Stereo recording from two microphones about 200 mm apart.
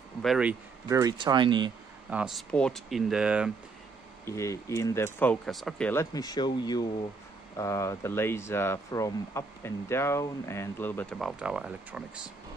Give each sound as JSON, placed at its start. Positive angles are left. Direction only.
{"t": 0.2, "sound": "speech", "side_deg": -5}
{"t": 2.0, "sound": "speech", "side_deg": -5}
{"t": 4.3, "sound": "speech", "side_deg": 15}